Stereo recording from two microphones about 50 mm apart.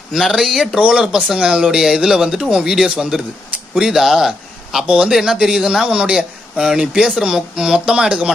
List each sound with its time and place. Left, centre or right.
0.2 s speech: centre
0.7 s speech: centre
4.8 s speech: right
5.1 s speech: centre